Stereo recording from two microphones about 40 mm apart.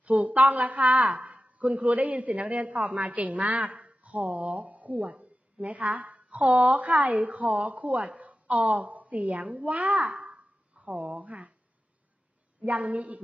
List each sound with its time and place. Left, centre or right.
0.0 s a woman's voice: right
12.6 s a woman's voice: right